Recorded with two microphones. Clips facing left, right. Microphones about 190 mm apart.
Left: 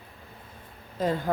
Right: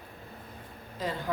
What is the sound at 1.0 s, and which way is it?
Speech, 50° left (ahead or behind).